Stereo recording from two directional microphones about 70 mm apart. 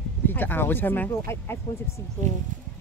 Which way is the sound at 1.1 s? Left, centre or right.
Left.